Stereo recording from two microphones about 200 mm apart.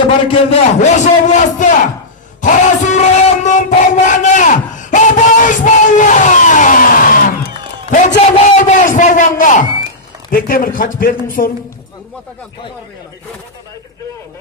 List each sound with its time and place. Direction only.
0.3 s a man's voice: 35° left (ahead or behind)